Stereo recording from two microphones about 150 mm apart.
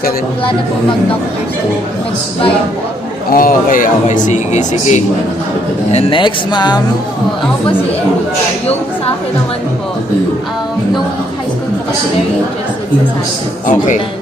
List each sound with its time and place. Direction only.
3.2 s speech: 70° left (ahead or behind); by 5.0 s 55° left (ahead or behind)
5.9 s speech: 40° left (ahead or behind)
13.7 s speech: 55° left (ahead or behind)